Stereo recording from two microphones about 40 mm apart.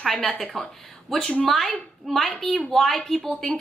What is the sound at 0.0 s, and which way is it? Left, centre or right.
A woman's voice, centre.